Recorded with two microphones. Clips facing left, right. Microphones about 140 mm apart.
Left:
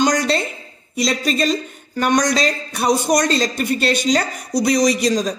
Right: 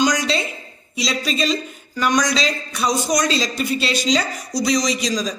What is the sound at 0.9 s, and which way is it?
A woman's voice, 50° left (ahead or behind).